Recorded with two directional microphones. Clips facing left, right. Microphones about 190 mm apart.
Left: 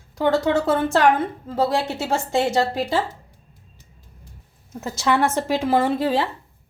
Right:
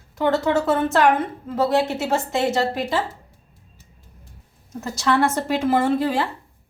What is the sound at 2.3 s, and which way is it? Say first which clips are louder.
Speech: left 3 dB; 30° left (ahead or behind).